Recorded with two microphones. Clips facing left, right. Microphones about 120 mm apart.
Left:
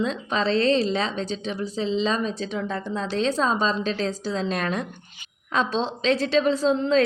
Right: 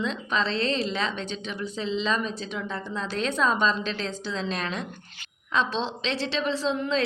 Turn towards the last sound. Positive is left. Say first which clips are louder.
# left 6 dB
turn(degrees=40)  # may be behind; listen again after turning